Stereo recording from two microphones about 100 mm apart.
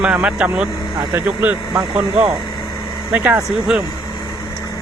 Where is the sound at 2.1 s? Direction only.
55° right (ahead or behind).